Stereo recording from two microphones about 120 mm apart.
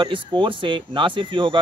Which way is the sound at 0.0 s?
40° right (ahead or behind).